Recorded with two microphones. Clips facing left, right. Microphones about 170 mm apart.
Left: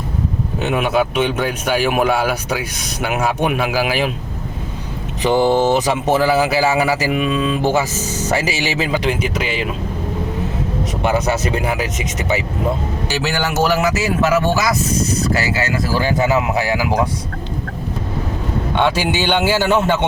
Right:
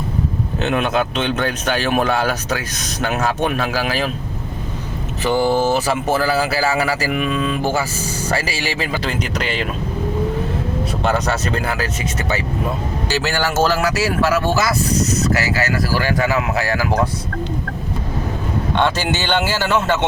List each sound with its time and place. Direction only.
0.6 s speech: 10° left (ahead or behind)
5.2 s speech: 20° left (ahead or behind)
11.0 s speech: 10° left (ahead or behind)
13.1 s speech: 15° left (ahead or behind)
18.8 s speech: 10° left (ahead or behind)